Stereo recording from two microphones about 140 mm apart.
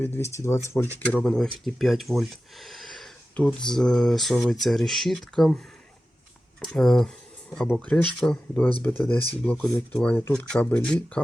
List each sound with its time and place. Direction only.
0.0 s speech: 20° left (ahead or behind)